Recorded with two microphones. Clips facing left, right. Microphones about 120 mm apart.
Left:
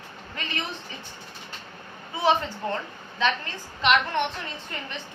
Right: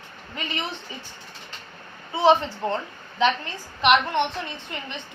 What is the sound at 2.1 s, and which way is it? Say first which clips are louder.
A woman's voice: right 5 dB; 25° right (ahead or behind).